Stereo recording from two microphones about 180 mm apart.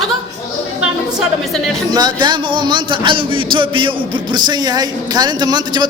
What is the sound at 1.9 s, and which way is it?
A man's voice, 25° right (ahead or behind).